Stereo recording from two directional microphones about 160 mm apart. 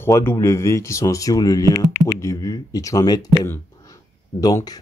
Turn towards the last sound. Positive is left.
turn(degrees=25)  # may be behind; listen again after turning